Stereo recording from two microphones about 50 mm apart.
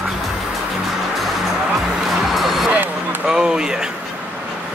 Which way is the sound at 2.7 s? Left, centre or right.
Right.